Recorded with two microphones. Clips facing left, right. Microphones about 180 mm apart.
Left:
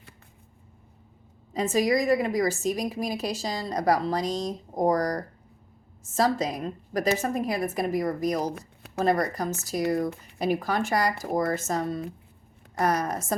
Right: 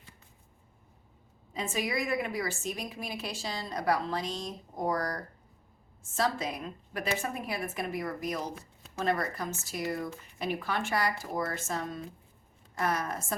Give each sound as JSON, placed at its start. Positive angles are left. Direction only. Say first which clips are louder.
{"t": 1.5, "sound": "a woman's voice", "louder": "left 9 dB", "side_deg": 40}